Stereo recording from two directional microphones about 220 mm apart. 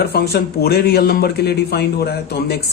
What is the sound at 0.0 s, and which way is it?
Speech, 45° left (ahead or behind).